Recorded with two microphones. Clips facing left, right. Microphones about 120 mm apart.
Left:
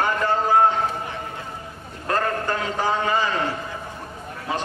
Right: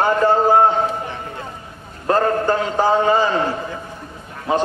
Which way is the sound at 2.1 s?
30° right (ahead or behind).